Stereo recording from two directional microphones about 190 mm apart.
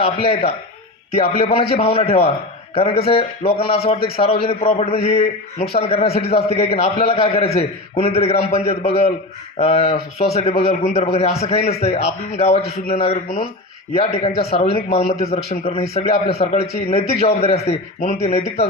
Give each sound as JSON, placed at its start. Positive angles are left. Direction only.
{"t": 0.0, "sound": "a man's voice", "side_deg": 30}